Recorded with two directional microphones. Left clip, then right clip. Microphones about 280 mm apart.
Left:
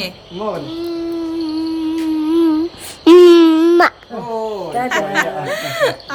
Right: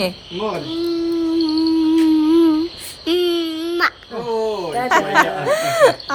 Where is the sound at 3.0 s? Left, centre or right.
Left.